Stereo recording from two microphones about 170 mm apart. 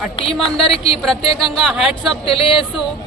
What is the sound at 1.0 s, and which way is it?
Speech, centre (ahead or behind).